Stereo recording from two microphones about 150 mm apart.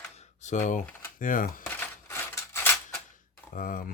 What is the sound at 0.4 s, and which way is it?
Speech, 55° left (ahead or behind).